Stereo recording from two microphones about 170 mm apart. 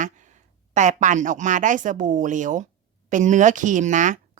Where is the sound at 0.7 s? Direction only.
45° right (ahead or behind).